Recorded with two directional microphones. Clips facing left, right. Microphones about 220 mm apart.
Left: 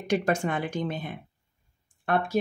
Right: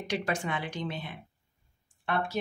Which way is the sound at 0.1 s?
45° left (ahead or behind).